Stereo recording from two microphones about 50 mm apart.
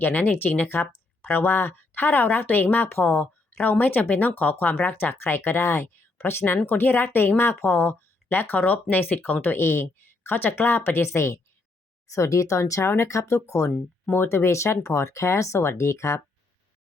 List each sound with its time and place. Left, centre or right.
0.0 s speech: left
9.6 s speech: left
12.0 s speech: left
14.1 s speech: left
14.8 s speech: left